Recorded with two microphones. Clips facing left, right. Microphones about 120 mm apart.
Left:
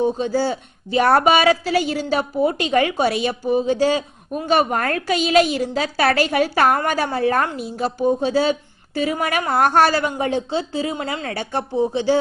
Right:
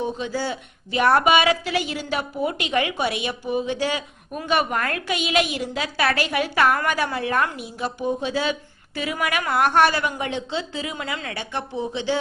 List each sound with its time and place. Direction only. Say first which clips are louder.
0.0 s a woman's voice: left 7 dB; 35° left (ahead or behind)